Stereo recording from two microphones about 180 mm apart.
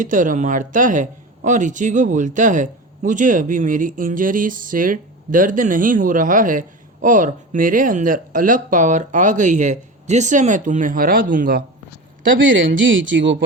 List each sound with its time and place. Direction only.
0.0 s speech: 45° right (ahead or behind)
13.1 s speech: 90° right